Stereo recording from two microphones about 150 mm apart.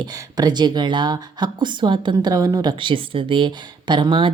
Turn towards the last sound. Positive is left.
turn(degrees=-35)  # may be behind; listen again after turning